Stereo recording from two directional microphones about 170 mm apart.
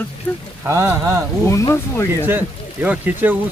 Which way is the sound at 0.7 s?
15° right (ahead or behind).